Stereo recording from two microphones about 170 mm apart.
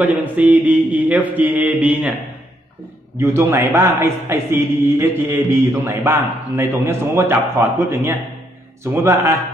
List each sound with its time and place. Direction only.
0.0 s a man's voice: 10° right (ahead or behind)
3.2 s a man's voice: 15° right (ahead or behind)